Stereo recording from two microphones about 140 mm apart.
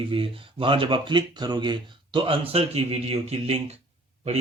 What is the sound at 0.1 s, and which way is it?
A man's voice, 40° right (ahead or behind).